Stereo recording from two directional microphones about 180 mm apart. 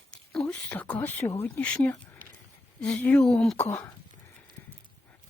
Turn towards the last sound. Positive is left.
turn(degrees=5)  # may be behind; listen again after turning